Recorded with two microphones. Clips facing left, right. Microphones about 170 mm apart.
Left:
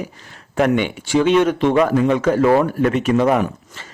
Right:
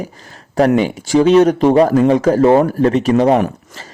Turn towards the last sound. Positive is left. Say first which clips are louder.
# right 4 dB
turn(degrees=-35)  # may be behind; listen again after turning